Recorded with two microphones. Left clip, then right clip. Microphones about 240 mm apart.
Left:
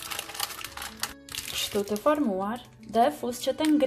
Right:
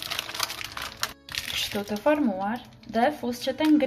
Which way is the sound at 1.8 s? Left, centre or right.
Centre.